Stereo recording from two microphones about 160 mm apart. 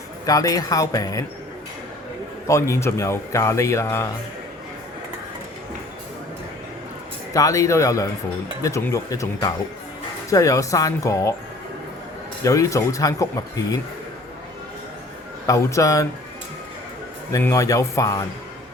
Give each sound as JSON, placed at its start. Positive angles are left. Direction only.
{"t": 0.3, "sound": "speech", "side_deg": 20}
{"t": 2.5, "sound": "speech", "side_deg": 15}
{"t": 7.3, "sound": "speech", "side_deg": 20}
{"t": 12.4, "sound": "speech", "side_deg": 20}
{"t": 15.4, "sound": "speech", "side_deg": 20}
{"t": 17.3, "sound": "speech", "side_deg": 20}